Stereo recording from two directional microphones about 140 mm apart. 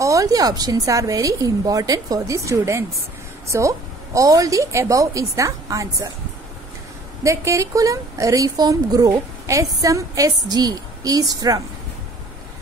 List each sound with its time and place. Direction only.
0.0 s a woman's voice: 25° right (ahead or behind)
7.2 s a woman's voice: 20° right (ahead or behind)